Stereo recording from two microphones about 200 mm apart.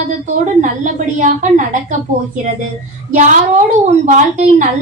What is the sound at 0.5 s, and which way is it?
Speech, 40° right (ahead or behind).